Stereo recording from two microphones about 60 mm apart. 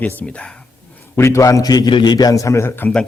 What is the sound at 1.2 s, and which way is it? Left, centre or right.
A man's voice, left.